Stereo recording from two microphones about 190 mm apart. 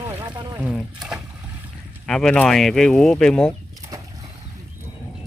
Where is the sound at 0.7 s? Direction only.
5° right (ahead or behind).